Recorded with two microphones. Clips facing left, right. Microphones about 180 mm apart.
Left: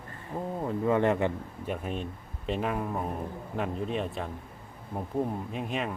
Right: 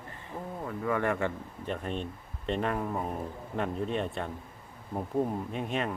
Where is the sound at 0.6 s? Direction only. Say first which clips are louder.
Left 5 dB; 25° left (ahead or behind).